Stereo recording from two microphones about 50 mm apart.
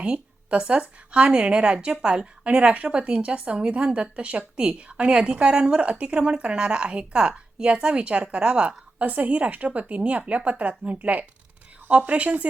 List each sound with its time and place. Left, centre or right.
0.0 s a woman's voice: right
9.0 s a woman's voice: right